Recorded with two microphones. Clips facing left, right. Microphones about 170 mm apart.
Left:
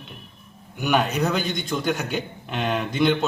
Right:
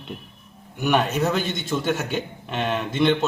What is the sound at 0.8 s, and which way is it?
A man's voice, centre (ahead or behind).